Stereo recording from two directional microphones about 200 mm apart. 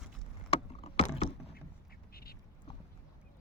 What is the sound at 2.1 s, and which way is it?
Duck, 50° left (ahead or behind).